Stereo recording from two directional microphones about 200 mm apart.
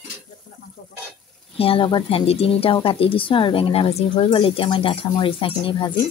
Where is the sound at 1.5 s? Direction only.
30° left (ahead or behind).